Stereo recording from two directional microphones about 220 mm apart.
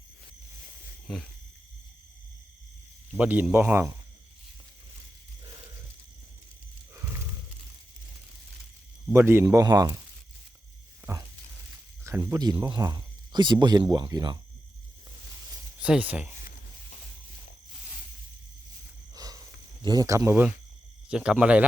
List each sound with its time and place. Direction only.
1.1 s speech: centre (ahead or behind)
3.2 s speech: 10° right (ahead or behind)
9.1 s speech: 10° right (ahead or behind)
12.0 s speech: 15° right (ahead or behind)
15.8 s speech: 5° right (ahead or behind)
19.1 s a sound: 15° right (ahead or behind)
19.8 s speech: 20° right (ahead or behind)